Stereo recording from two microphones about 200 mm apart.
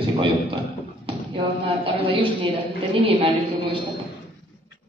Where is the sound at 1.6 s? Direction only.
25° right (ahead or behind).